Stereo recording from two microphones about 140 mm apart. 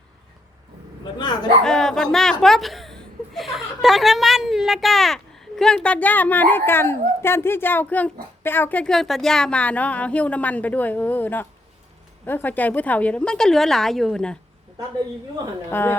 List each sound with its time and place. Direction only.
1.6 s speech: 5° left (ahead or behind)
15.7 s speech: 15° left (ahead or behind)